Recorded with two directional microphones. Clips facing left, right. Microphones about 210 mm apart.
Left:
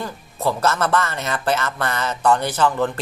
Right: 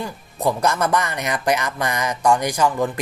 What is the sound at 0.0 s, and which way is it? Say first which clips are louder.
Speech: right 1 dB; 15° right (ahead or behind).